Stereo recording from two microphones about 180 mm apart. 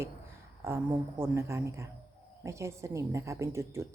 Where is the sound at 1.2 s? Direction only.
15° right (ahead or behind).